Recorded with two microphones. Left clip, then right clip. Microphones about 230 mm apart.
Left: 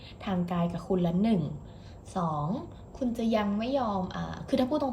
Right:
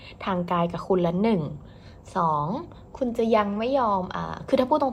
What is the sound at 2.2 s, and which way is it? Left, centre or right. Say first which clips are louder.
Speech: right 9 dB; right.